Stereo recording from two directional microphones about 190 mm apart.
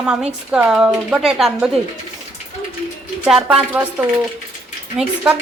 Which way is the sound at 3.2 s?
5° right (ahead or behind).